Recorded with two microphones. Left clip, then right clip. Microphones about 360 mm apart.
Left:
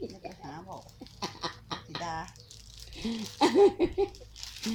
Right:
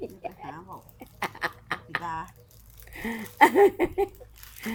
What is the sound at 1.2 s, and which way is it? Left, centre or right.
Duck, right.